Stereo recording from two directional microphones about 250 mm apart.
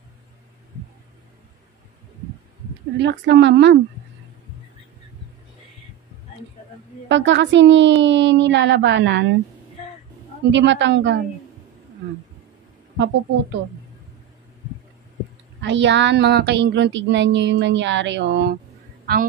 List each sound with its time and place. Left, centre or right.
3.0 s speech: right
7.1 s speech: right
10.5 s speech: right
12.9 s speech: right
15.6 s speech: right